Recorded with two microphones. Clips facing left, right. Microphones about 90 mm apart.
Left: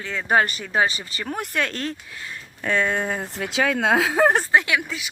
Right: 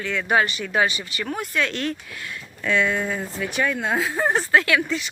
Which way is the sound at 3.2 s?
65° left (ahead or behind).